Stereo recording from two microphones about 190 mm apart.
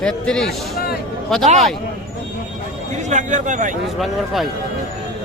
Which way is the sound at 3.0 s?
40° right (ahead or behind).